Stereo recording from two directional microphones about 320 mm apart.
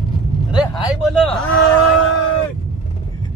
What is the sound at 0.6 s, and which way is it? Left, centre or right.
Speech, centre.